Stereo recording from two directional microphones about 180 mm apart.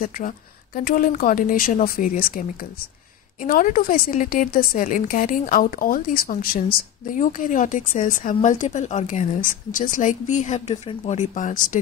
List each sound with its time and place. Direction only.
0.7 s a woman's voice: 50° left (ahead or behind)